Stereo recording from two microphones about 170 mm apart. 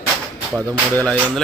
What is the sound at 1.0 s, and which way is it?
Speech, 5° left (ahead or behind).